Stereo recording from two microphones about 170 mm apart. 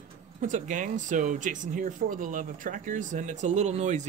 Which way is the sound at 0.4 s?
50° right (ahead or behind).